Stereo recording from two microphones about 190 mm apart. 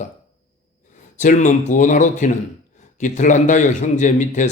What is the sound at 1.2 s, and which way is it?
Speech, 40° left (ahead or behind).